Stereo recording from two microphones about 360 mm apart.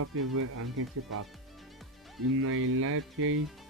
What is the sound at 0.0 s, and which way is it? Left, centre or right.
Speech, right.